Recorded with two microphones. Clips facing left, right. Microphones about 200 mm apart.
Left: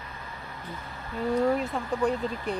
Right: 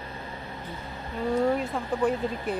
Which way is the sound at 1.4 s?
Centre (ahead or behind).